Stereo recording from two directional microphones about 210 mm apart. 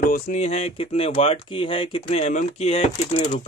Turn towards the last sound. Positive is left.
turn(degrees=30)  # may be behind; listen again after turning